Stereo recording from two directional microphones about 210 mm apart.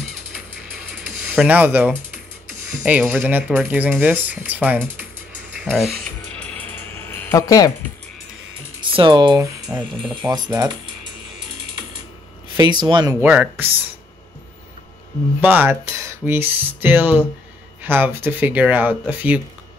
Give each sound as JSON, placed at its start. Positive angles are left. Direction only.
{"t": 1.3, "sound": "speech", "side_deg": -5}
{"t": 6.5, "sound": "music", "side_deg": 10}
{"t": 8.9, "sound": "speech", "side_deg": -20}
{"t": 9.7, "sound": "speech", "side_deg": -10}
{"t": 10.2, "sound": "speech", "side_deg": -20}
{"t": 12.5, "sound": "speech", "side_deg": -20}
{"t": 13.2, "sound": "speech", "side_deg": -10}
{"t": 15.4, "sound": "speech", "side_deg": -10}